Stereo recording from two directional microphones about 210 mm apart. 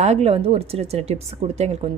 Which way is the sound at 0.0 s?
30° right (ahead or behind).